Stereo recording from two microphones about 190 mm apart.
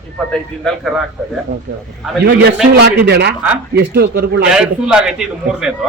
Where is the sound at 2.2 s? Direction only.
65° right (ahead or behind).